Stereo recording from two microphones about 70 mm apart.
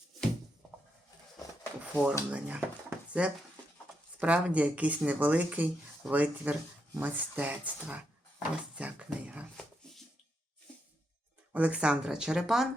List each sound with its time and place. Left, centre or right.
1.8 s a sound: centre
2.3 s speech: centre
11.5 s speech: centre